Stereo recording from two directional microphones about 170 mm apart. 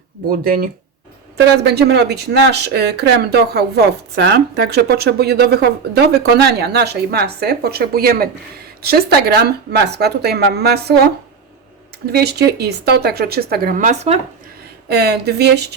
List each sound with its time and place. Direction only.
0.3 s speech: 55° right (ahead or behind)
1.5 s speech: 75° right (ahead or behind)
12.1 s speech: 75° right (ahead or behind); by 14.2 s 45° right (ahead or behind)
14.8 s speech: 75° right (ahead or behind)